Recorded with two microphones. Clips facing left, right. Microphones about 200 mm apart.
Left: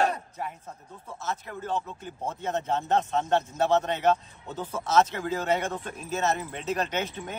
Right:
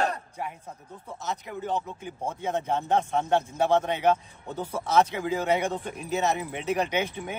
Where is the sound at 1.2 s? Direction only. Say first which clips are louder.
Right 1 dB; 15° right (ahead or behind).